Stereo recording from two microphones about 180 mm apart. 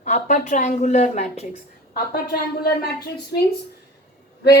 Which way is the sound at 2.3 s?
60° left (ahead or behind).